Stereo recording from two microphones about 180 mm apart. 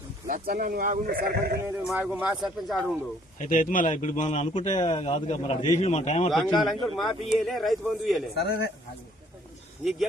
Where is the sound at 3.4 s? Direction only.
45° left (ahead or behind).